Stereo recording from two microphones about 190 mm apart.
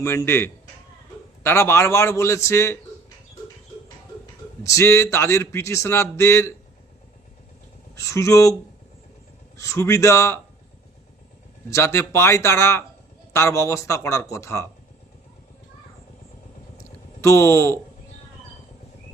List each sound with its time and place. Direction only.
0.0 s speech: 15° left (ahead or behind)
4.6 s speech: 15° left (ahead or behind)
7.9 s speech: 15° left (ahead or behind)
9.6 s speech: 15° left (ahead or behind)
11.7 s speech: 15° left (ahead or behind)
17.2 s speech: 15° left (ahead or behind)